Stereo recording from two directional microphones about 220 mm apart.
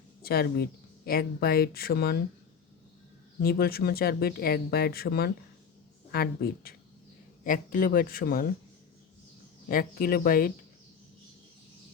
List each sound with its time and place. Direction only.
0.2 s speech: 45° left (ahead or behind)
3.4 s speech: 45° left (ahead or behind)
9.6 s speech: 40° left (ahead or behind)